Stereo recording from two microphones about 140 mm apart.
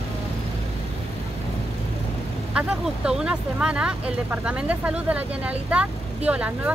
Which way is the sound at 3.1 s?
5° right (ahead or behind).